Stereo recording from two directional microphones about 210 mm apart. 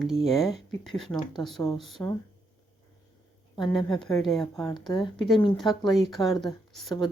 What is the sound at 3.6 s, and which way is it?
Speech, 20° left (ahead or behind).